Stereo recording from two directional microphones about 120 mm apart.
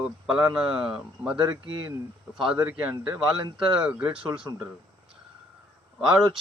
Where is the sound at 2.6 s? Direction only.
15° right (ahead or behind).